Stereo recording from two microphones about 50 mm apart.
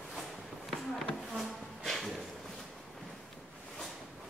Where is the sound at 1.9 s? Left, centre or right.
Centre.